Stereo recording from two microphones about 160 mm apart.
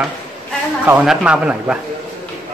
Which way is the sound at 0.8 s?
5° right (ahead or behind).